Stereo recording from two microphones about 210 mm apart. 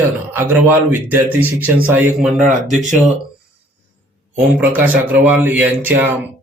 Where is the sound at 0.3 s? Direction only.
10° right (ahead or behind).